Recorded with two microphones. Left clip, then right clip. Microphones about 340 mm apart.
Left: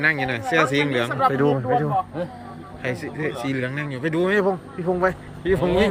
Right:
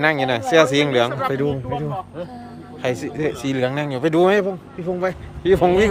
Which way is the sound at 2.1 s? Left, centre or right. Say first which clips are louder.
Left 2 dB; left.